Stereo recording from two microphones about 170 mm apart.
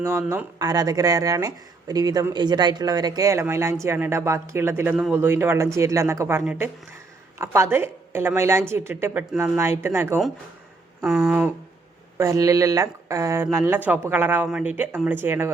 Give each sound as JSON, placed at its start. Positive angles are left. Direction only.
{"t": 0.0, "sound": "speech", "side_deg": -15}
{"t": 11.0, "sound": "speech", "side_deg": -5}